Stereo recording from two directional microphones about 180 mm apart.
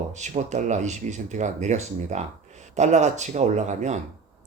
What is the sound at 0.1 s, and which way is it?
A man's voice, 40° right (ahead or behind).